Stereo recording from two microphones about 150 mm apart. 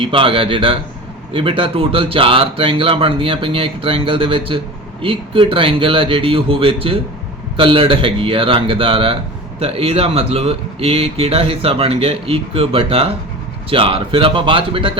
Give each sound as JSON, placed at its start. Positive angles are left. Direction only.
{"t": 0.0, "sound": "speech", "side_deg": -35}